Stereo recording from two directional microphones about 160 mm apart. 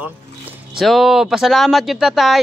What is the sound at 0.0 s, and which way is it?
Speech, 5° right (ahead or behind).